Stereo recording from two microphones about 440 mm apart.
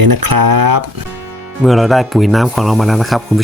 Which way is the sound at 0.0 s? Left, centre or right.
Right.